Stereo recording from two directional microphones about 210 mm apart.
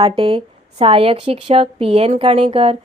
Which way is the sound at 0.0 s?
25° right (ahead or behind).